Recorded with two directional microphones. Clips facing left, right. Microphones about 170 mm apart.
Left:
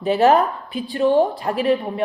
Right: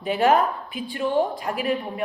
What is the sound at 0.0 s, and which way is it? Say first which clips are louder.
A woman's voice: left 4 dB; 40° left (ahead or behind).